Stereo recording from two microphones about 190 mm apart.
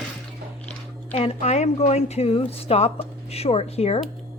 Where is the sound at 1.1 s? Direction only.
35° left (ahead or behind).